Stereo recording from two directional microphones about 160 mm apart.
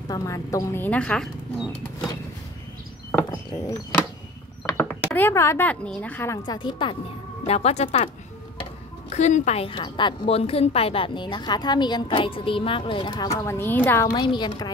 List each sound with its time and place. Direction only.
0.1 s speech: 20° left (ahead or behind); by 2.0 s 5° left (ahead or behind)
4.7 s speech: 10° left (ahead or behind); by 7.0 s 30° left (ahead or behind)
7.4 s a woman's voice: 40° left (ahead or behind)
9.1 s a woman's voice: 50° left (ahead or behind); by 14.0 s 15° left (ahead or behind)
14.0 s a woman's voice: 30° left (ahead or behind)